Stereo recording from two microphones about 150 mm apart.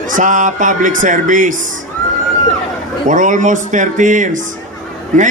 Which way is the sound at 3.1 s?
55° right (ahead or behind).